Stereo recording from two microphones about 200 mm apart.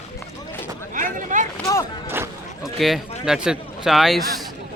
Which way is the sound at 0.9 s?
40° right (ahead or behind).